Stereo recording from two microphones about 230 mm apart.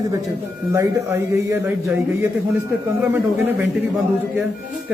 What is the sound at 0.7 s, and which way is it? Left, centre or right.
Speech, centre.